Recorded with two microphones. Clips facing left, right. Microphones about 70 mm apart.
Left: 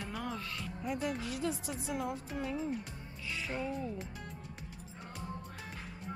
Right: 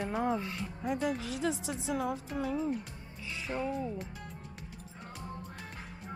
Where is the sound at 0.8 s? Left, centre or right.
Right.